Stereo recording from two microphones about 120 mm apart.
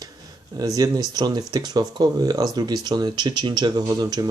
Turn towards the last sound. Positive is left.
turn(degrees=-30)  # may be behind; listen again after turning